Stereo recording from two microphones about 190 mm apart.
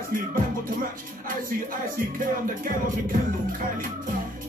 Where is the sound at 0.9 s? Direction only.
45° right (ahead or behind).